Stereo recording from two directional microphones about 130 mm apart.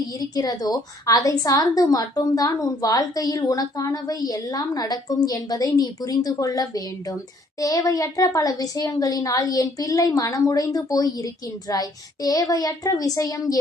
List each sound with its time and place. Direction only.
0.1 s a woman's voice: 30° left (ahead or behind)